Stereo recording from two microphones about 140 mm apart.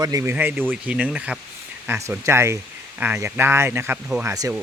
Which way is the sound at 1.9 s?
20° right (ahead or behind).